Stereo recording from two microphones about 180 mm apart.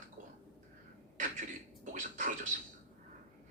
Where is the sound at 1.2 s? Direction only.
45° right (ahead or behind).